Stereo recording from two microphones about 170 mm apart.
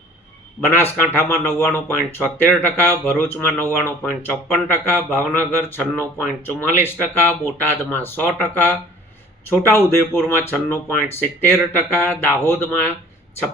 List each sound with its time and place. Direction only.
0.6 s speech: 10° left (ahead or behind)